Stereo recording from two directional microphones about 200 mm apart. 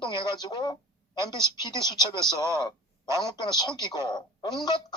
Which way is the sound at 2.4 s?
15° right (ahead or behind).